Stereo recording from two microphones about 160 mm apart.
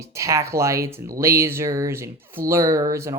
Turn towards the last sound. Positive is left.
turn(degrees=-20)  # may be behind; listen again after turning